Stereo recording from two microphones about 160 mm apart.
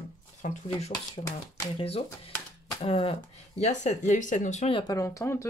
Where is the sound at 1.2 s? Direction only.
30° left (ahead or behind).